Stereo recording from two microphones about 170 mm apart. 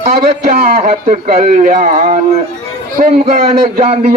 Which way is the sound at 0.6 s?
55° right (ahead or behind).